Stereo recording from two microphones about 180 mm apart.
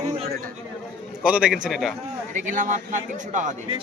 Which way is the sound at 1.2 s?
5° right (ahead or behind).